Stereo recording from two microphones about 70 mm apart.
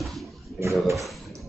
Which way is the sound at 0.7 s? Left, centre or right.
Centre.